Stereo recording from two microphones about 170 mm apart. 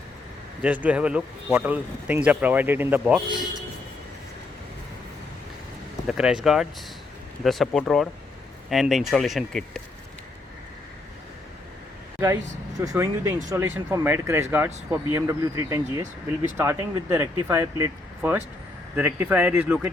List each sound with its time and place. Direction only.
0.6 s speech: 10° right (ahead or behind)
6.1 s speech: 5° right (ahead or behind)
12.8 s speech: 15° right (ahead or behind)